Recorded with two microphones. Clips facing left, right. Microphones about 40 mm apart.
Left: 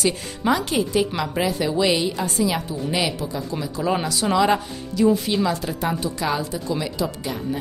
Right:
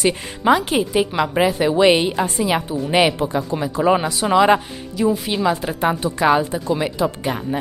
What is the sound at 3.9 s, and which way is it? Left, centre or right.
A woman's voice, right.